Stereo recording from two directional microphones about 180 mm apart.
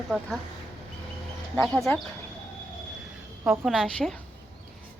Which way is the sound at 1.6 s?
Centre (ahead or behind).